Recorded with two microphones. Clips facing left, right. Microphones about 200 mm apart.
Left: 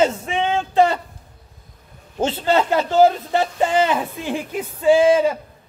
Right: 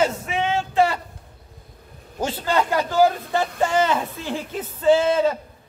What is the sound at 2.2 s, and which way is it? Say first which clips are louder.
A man's voice: left 4 dB; 25° left (ahead or behind).